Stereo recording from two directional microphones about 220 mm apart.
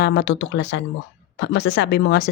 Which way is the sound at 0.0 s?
45° left (ahead or behind).